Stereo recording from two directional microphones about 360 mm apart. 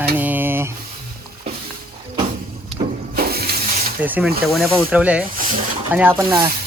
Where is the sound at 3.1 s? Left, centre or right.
Right.